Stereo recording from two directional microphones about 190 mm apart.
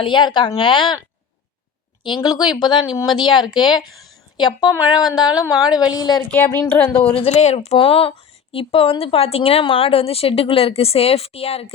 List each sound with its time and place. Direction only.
0.0 s a woman's voice: 25° left (ahead or behind)
2.0 s a woman's voice: 25° left (ahead or behind)
3.8 s a sound: centre (ahead or behind)
4.4 s a woman's voice: 20° left (ahead or behind)
6.9 s a woman's voice: 30° left (ahead or behind)